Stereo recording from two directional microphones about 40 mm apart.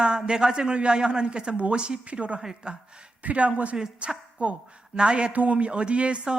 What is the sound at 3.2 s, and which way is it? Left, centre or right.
Speech, right.